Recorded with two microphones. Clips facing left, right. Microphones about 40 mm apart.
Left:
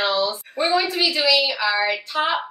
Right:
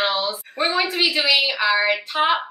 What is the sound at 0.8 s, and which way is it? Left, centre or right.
Speech, right.